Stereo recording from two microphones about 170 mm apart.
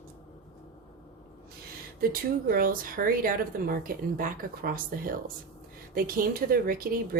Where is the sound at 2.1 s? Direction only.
60° right (ahead or behind).